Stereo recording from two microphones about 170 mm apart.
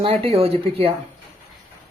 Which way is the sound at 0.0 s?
35° right (ahead or behind).